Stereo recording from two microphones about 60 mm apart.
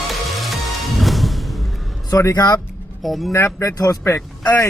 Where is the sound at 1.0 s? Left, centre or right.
Centre.